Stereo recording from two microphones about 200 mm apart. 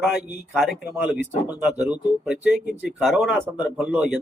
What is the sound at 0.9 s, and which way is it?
Speech, 5° right (ahead or behind).